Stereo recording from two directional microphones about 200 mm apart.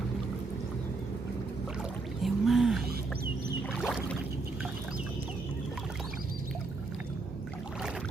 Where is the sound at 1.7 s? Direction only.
Centre (ahead or behind).